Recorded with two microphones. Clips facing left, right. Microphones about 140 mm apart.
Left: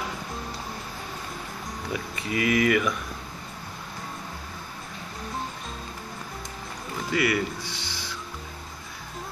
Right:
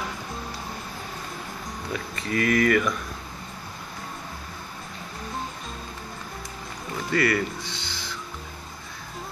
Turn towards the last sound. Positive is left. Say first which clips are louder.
# even
turn(degrees=-20)  # may be behind; listen again after turning